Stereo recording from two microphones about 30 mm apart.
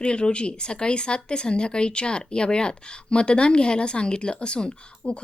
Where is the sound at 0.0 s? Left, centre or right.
Left.